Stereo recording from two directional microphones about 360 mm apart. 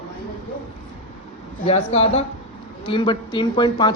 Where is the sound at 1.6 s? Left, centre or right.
Centre.